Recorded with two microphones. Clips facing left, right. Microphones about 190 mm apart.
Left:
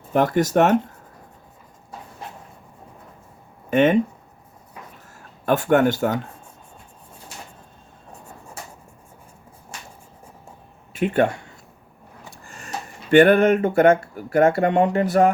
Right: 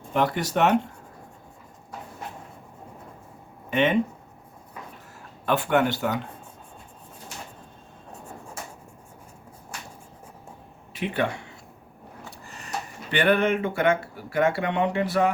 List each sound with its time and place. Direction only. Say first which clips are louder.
0.1 s speech: left 6 dB; 45° left (ahead or behind)
3.7 s a sound: left 6 dB; 45° left (ahead or behind)
5.5 s speech: left 5 dB; 45° left (ahead or behind)
10.9 s speech: left 7 dB; 50° left (ahead or behind)
12.5 s speech: left 1 dB; 45° left (ahead or behind)